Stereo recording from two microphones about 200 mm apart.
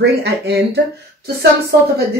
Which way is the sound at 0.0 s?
55° right (ahead or behind).